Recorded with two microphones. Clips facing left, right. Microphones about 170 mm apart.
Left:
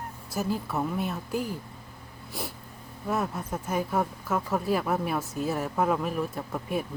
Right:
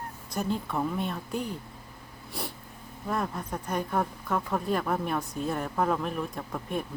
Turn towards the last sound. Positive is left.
turn(degrees=5)  # may be behind; listen again after turning